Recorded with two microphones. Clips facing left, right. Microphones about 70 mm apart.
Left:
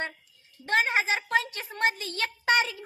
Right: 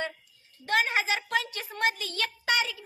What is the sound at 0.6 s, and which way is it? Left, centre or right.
A woman's voice, left.